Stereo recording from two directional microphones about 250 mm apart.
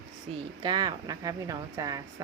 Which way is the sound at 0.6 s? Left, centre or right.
Centre.